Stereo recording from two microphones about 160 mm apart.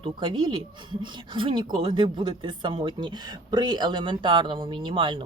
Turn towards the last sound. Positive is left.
turn(degrees=-30)  # may be behind; listen again after turning